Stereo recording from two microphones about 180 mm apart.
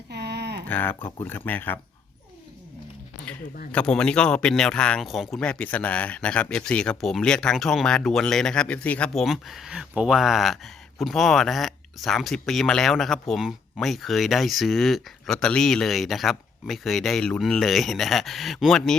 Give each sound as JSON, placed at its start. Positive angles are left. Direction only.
{"t": 0.1, "sound": "a sound", "side_deg": -65}
{"t": 0.7, "sound": "speech", "side_deg": 10}
{"t": 3.7, "sound": "speech", "side_deg": 5}